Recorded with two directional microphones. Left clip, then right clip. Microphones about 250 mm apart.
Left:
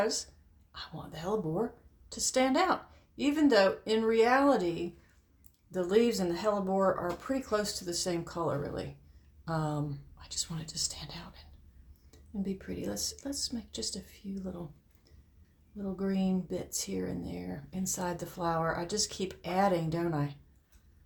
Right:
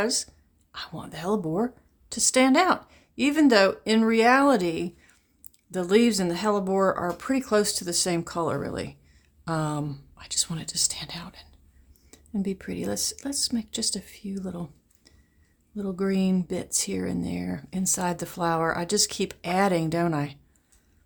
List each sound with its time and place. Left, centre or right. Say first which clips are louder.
0.0 s speech: right 5 dB; right
15.7 s speech: right 8 dB; right